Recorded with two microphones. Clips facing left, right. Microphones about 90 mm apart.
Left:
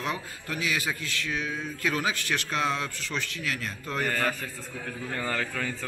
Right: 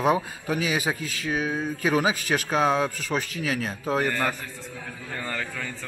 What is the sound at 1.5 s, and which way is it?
Speech, 45° right (ahead or behind).